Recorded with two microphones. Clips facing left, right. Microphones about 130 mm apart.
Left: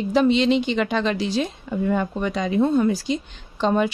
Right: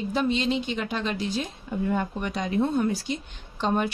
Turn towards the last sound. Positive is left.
turn(degrees=90)